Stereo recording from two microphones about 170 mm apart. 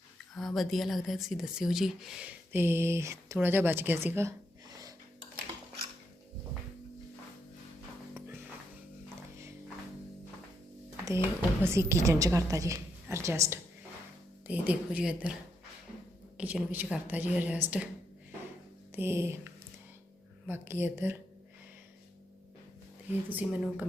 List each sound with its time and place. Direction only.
0.3 s speech: centre (ahead or behind); by 4.4 s 15° right (ahead or behind)
11.0 s speech: 15° right (ahead or behind)
16.4 s speech: 10° right (ahead or behind)
18.9 s speech: 15° right (ahead or behind)
23.3 s speech: 10° right (ahead or behind)